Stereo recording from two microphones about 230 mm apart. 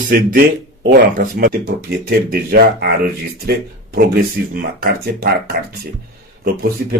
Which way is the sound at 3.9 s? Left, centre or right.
Right.